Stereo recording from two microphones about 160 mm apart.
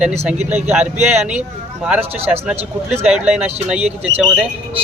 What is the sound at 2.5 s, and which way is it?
Speech, 40° right (ahead or behind).